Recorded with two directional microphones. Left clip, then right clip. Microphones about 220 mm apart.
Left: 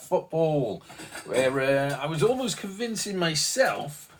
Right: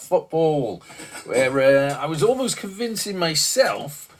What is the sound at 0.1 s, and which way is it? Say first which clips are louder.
Speech: right 5 dB; 45° right (ahead or behind).